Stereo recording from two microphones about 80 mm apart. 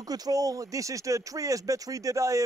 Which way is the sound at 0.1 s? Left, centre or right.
Right.